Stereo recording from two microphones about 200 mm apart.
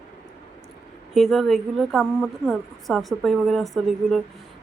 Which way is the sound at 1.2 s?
Centre (ahead or behind).